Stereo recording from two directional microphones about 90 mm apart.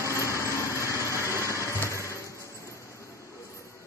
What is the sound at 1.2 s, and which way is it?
Music, 35° left (ahead or behind).